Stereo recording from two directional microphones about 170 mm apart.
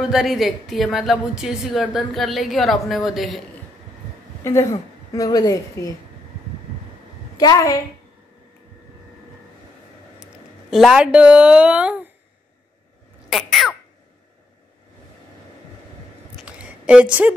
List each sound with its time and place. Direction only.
0.0 s speech: centre (ahead or behind)
4.4 s a woman's voice: 15° left (ahead or behind)
7.3 s a woman's voice: 20° left (ahead or behind)
10.7 s a woman's voice: centre (ahead or behind)
13.3 s a sound: centre (ahead or behind)
16.4 s a sound: 5° right (ahead or behind)